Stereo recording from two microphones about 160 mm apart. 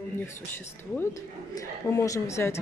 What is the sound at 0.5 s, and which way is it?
Speech, 15° left (ahead or behind).